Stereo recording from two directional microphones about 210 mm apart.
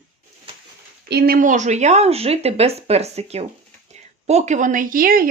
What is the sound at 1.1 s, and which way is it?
Speech, 50° right (ahead or behind).